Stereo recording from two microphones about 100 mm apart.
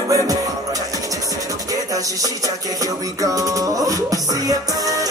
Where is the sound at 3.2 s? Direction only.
35° right (ahead or behind).